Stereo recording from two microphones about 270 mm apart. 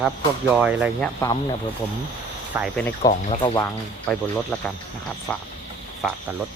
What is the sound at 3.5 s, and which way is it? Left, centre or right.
Speech, centre.